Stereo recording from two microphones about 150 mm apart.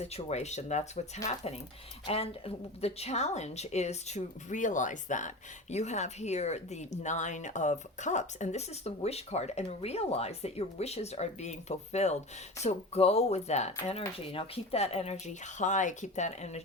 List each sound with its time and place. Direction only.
0.0 s speech: 45° left (ahead or behind)